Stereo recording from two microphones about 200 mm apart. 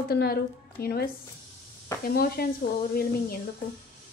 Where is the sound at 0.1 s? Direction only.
50° left (ahead or behind).